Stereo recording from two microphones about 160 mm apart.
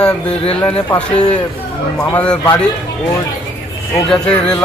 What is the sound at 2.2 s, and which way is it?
Speech, 5° left (ahead or behind).